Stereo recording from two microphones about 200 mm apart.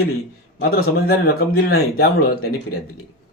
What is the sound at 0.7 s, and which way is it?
A man's voice, 50° left (ahead or behind).